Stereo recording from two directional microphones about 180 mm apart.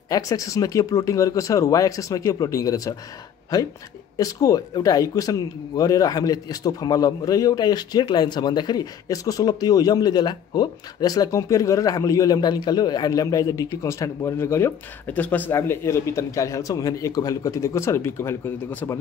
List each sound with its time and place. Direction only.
0.1 s a man's voice: 20° left (ahead or behind)
4.2 s a man's voice: 20° left (ahead or behind)